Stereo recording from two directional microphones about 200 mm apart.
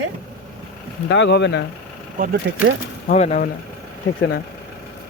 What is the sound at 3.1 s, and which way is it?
Speech, 35° left (ahead or behind).